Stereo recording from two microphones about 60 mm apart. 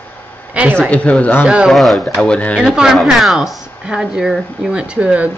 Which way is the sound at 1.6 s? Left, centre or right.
Centre.